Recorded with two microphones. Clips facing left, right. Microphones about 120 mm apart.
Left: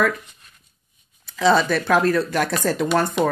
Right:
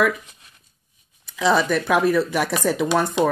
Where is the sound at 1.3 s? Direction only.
5° right (ahead or behind).